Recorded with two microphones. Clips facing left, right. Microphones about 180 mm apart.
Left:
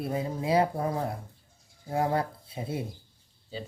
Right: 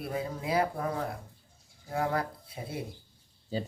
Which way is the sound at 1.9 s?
30° left (ahead or behind).